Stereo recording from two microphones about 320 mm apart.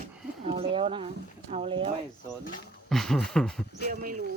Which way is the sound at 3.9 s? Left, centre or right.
Right.